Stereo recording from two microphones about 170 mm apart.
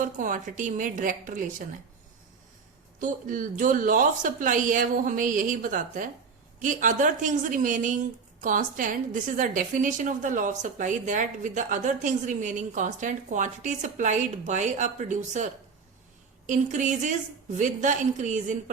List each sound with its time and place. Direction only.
0.0 s speech: 50° right (ahead or behind)
3.0 s speech: 50° right (ahead or behind)
16.5 s speech: 45° right (ahead or behind)